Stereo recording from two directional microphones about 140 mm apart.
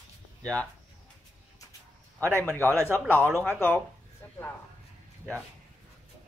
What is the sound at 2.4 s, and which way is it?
Speech, 20° right (ahead or behind).